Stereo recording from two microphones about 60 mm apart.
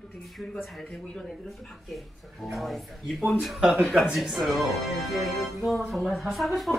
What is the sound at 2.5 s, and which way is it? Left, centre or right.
Speech, centre.